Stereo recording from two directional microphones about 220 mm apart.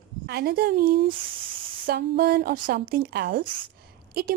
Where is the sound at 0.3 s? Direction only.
45° right (ahead or behind).